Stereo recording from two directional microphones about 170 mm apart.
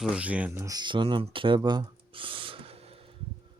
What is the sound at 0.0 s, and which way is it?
Speech, 5° right (ahead or behind).